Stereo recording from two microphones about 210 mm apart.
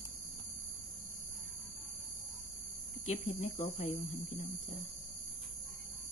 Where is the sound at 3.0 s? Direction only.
35° left (ahead or behind).